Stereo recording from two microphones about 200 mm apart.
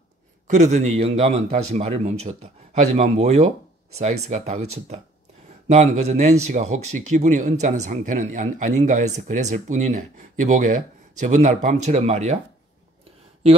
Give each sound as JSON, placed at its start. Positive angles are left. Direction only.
{"t": 0.5, "sound": "speech", "side_deg": -35}